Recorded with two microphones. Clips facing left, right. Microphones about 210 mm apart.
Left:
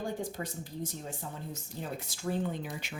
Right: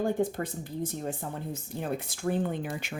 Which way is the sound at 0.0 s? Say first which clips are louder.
Right 8 dB; 55° right (ahead or behind).